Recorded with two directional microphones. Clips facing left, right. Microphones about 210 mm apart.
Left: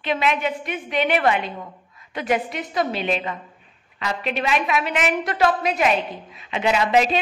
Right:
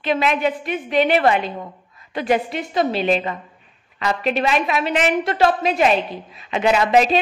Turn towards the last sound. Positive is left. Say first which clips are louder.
# right 3 dB
turn(degrees=-45)  # may be behind; listen again after turning